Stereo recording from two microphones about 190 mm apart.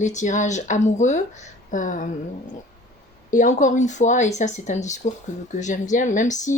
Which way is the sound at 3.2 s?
45° left (ahead or behind).